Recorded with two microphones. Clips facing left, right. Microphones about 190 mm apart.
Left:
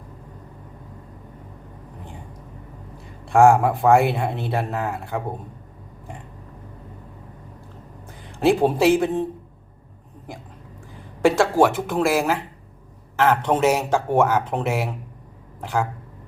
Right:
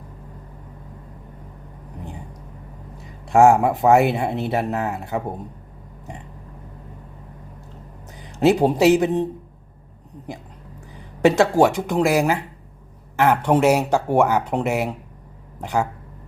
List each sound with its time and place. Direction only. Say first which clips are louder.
3.2 s speech: right 1 dB; 20° right (ahead or behind)
8.4 s speech: right 2 dB; 20° right (ahead or behind)
11.2 s speech: right 2 dB; 20° right (ahead or behind)